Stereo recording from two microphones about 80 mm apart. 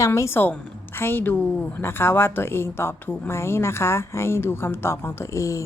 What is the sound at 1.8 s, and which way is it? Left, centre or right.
A woman's voice, left.